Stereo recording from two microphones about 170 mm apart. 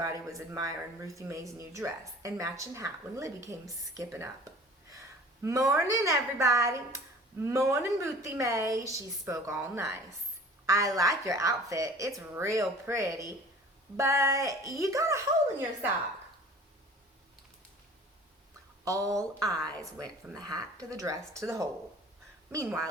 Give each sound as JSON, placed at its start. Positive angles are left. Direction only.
{"t": 0.0, "sound": "a woman's voice", "side_deg": -20}
{"t": 18.9, "sound": "a woman's voice", "side_deg": -20}